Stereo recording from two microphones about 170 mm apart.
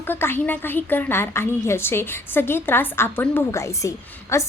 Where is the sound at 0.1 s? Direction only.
15° left (ahead or behind).